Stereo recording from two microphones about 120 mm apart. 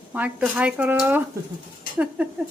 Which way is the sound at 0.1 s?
10° right (ahead or behind).